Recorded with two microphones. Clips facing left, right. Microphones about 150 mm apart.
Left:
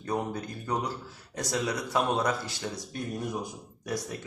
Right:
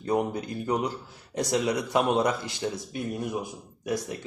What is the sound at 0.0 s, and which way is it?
A man's voice, 20° right (ahead or behind).